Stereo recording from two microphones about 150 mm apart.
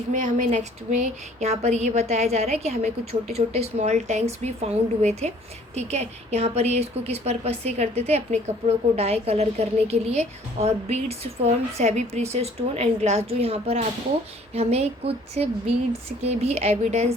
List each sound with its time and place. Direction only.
0.1 s a woman's voice: 60° right (ahead or behind)